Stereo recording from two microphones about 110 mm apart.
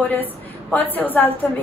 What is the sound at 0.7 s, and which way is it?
Speech, 15° left (ahead or behind).